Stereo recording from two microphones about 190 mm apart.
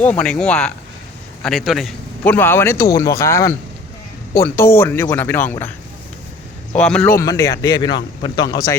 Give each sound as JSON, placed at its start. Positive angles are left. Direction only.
{"t": 0.0, "sound": "a man's voice", "side_deg": 5}
{"t": 6.7, "sound": "speech", "side_deg": 5}
{"t": 7.0, "sound": "a man's voice", "side_deg": 15}